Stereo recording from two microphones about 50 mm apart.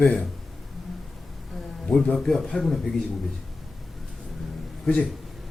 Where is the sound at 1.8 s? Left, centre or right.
Left.